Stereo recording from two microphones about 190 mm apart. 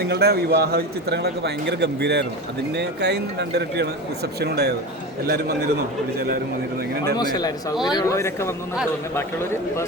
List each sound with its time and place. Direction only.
0.0 s a man's voice: 55° right (ahead or behind)
7.2 s a man's voice: 20° left (ahead or behind)